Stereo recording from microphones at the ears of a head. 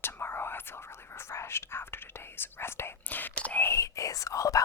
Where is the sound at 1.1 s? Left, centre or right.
Left.